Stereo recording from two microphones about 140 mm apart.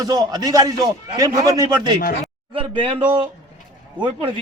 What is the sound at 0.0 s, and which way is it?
A man's voice, 25° right (ahead or behind).